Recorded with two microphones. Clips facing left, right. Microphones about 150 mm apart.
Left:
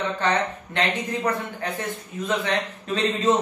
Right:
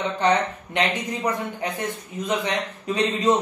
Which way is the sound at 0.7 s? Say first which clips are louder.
Right 1 dB; 15° right (ahead or behind).